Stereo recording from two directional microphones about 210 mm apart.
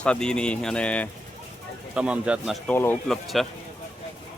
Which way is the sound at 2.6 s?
10° left (ahead or behind).